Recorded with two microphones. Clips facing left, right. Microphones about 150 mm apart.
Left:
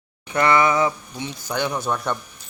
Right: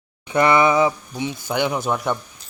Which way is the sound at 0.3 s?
20° right (ahead or behind).